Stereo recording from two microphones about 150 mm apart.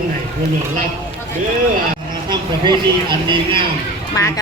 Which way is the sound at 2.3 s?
30° right (ahead or behind).